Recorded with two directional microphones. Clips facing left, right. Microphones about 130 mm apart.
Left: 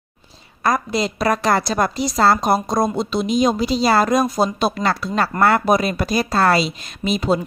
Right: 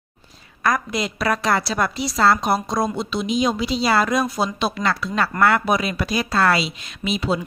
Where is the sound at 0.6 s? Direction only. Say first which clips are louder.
Left 3 dB; 30° left (ahead or behind).